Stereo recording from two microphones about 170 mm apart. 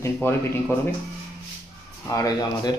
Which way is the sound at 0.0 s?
10° left (ahead or behind).